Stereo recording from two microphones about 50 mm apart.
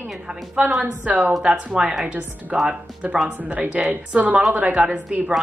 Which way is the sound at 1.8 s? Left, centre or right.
Centre.